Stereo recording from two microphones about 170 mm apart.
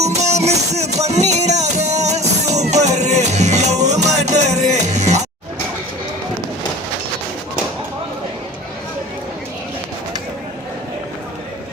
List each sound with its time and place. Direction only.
0.0 s music: 40° right (ahead or behind)